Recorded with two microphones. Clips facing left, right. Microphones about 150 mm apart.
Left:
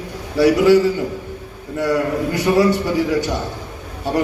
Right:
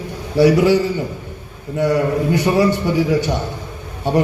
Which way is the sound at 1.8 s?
25° right (ahead or behind).